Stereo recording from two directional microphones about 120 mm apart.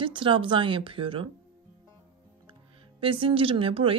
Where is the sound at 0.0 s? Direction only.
45° right (ahead or behind).